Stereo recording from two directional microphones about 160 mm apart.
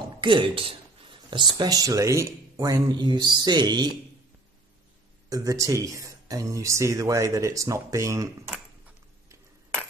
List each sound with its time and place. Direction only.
0.2 s speech: 30° right (ahead or behind)
5.3 s speech: 20° right (ahead or behind)